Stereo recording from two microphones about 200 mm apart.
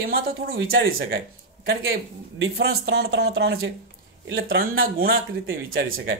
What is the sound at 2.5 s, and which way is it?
Speech, 50° right (ahead or behind).